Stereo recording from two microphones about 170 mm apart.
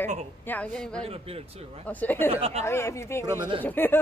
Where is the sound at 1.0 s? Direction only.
35° right (ahead or behind).